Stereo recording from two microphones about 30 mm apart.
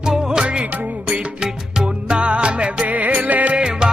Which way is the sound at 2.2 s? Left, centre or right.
Right.